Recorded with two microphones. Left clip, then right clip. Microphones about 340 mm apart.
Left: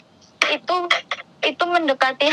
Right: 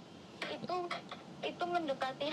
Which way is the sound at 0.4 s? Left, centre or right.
Left.